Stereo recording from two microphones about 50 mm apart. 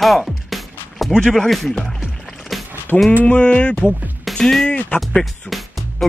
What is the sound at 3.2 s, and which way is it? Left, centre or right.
Speech, left.